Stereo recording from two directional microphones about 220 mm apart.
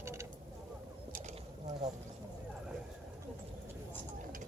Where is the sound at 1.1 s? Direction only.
35° right (ahead or behind).